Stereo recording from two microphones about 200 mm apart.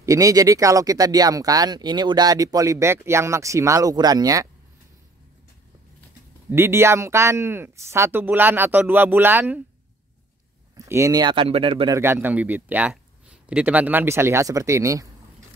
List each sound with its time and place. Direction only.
0.0 s speech: 15° right (ahead or behind)
6.5 s speech: 15° right (ahead or behind)
10.9 s speech: 15° right (ahead or behind)
12.0 s speech: 10° right (ahead or behind)